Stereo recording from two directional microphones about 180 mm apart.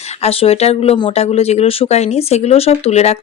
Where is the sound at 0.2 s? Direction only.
35° left (ahead or behind).